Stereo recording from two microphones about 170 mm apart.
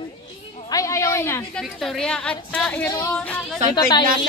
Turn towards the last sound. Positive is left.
turn(degrees=25)  # may be behind; listen again after turning